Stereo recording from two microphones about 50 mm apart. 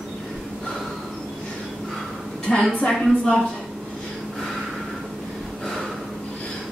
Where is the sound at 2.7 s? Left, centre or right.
Centre.